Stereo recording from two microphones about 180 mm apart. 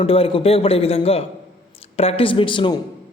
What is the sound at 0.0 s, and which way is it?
A woman's voice, 30° left (ahead or behind).